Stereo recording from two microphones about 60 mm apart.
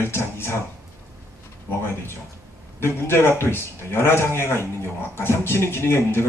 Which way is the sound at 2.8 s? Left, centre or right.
Left.